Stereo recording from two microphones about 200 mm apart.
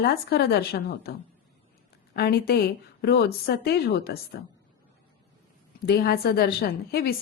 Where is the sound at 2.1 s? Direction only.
50° left (ahead or behind).